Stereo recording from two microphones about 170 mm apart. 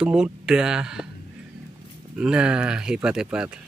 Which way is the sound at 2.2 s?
5° right (ahead or behind).